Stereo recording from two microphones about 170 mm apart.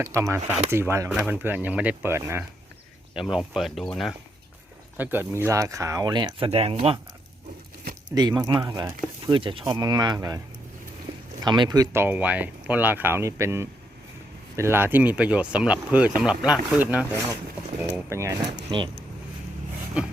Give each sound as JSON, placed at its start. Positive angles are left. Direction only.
{"t": 0.0, "sound": "speech", "side_deg": -15}
{"t": 3.2, "sound": "speech", "side_deg": -5}
{"t": 4.9, "sound": "speech", "side_deg": -15}
{"t": 8.1, "sound": "speech", "side_deg": -25}
{"t": 9.2, "sound": "speech", "side_deg": -30}
{"t": 11.4, "sound": "speech", "side_deg": -25}
{"t": 18.1, "sound": "speech", "side_deg": -15}
{"t": 18.7, "sound": "speech", "side_deg": -30}
{"t": 20.0, "sound": "speech", "side_deg": -5}